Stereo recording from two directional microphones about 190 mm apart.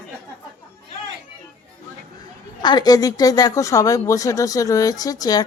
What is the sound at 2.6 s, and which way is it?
A woman's voice, 20° left (ahead or behind).